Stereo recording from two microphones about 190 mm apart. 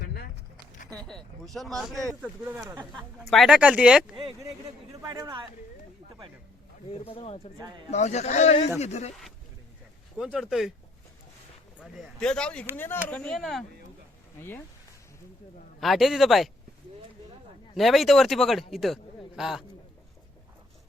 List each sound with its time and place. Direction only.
0.0 s a sound: 60° left (ahead or behind)
0.9 s speech: centre (ahead or behind)
4.1 s a woman's voice: 30° right (ahead or behind)
6.8 s speech: 30° left (ahead or behind)
10.2 s speech: 5° right (ahead or behind)
11.8 s speech: centre (ahead or behind)
15.8 s speech: centre (ahead or behind)
17.7 s speech: centre (ahead or behind)